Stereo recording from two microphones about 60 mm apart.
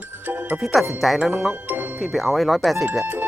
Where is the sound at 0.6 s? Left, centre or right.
Centre.